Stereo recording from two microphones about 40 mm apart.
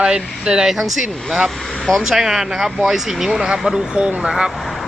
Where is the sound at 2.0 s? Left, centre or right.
Centre.